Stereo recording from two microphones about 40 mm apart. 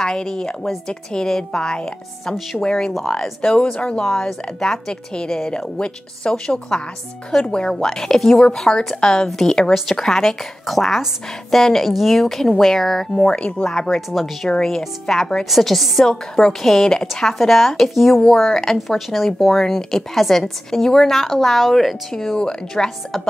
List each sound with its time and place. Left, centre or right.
0.0 s a woman's voice: centre
4.0 s a woman's voice: centre
13.2 s speech: left
13.7 s a woman's voice: centre
14.1 s speech: centre
14.5 s a woman's voice: centre
18.2 s a woman's voice: centre
18.9 s a woman's voice: centre